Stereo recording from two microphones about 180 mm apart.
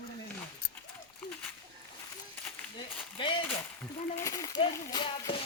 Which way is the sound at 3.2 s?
25° left (ahead or behind).